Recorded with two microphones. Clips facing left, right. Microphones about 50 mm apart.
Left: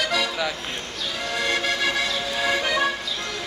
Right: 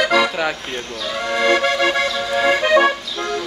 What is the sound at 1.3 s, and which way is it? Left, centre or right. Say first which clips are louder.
Music: right 8 dB; right.